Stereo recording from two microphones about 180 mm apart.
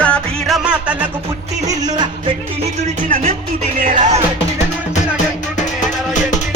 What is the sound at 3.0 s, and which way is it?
Music, 50° right (ahead or behind).